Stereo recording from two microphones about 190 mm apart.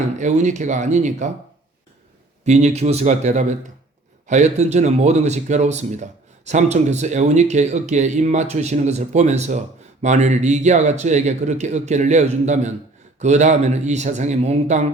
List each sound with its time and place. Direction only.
0.2 s speech: 40° right (ahead or behind)
2.4 s speech: 35° right (ahead or behind)